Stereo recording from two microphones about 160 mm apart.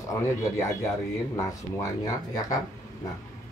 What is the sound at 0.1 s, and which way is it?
Speech, 20° left (ahead or behind).